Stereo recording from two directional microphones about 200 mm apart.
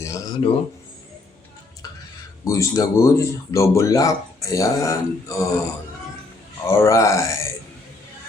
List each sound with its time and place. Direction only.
0.0 s a sound: 15° left (ahead or behind)
2.4 s speech: 15° left (ahead or behind)
6.7 s speech: 15° left (ahead or behind)